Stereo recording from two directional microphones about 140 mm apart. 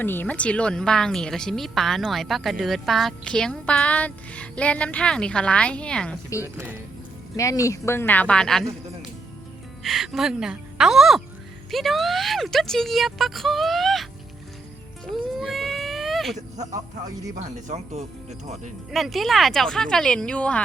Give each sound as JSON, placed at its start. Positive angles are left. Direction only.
{"t": 0.0, "sound": "a woman's voice", "side_deg": 15}
{"t": 6.4, "sound": "speech", "side_deg": -15}
{"t": 7.3, "sound": "speech", "side_deg": 25}
{"t": 9.8, "sound": "a woman's voice", "side_deg": 0}
{"t": 15.0, "sound": "a sound", "side_deg": 0}
{"t": 17.4, "sound": "speech", "side_deg": -55}
{"t": 18.9, "sound": "a woman's voice", "side_deg": 0}